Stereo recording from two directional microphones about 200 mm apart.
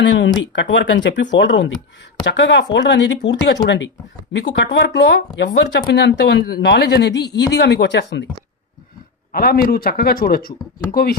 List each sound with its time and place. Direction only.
0.0 s speech: 65° left (ahead or behind)
9.3 s speech: 50° left (ahead or behind)